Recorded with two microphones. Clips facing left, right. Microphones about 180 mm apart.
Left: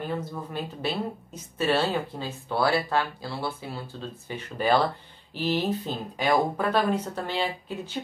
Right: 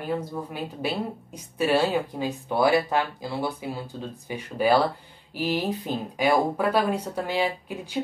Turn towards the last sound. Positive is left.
turn(degrees=-10)  # may be behind; listen again after turning